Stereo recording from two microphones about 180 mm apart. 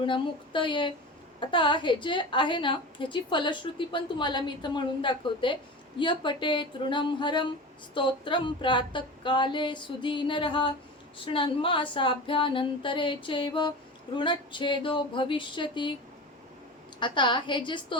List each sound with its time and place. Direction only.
0.0 s a woman's voice: 25° left (ahead or behind)
17.0 s a woman's voice: 25° left (ahead or behind)